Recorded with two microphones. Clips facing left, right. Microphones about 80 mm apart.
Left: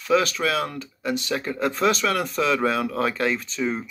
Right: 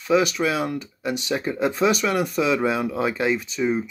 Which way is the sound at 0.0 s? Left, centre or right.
Centre.